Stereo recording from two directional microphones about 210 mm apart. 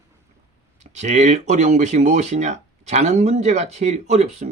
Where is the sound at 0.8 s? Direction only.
35° right (ahead or behind).